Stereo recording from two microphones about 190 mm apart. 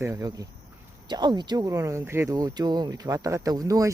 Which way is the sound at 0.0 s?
15° right (ahead or behind).